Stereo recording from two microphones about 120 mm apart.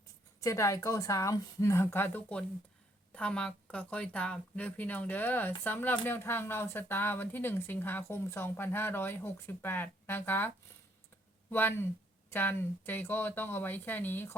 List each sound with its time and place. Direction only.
0.3 s a woman's voice: 25° left (ahead or behind)
12.3 s speech: 15° left (ahead or behind)